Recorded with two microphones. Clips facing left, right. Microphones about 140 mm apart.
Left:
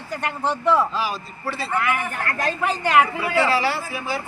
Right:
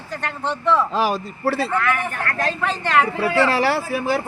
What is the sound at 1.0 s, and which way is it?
Speech, 45° right (ahead or behind).